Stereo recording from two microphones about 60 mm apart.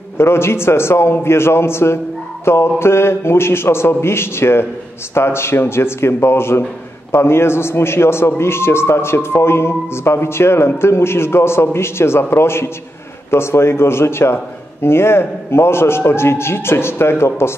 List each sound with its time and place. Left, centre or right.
0.2 s speech: left